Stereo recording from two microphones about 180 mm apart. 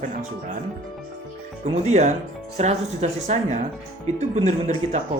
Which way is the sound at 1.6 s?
40° right (ahead or behind).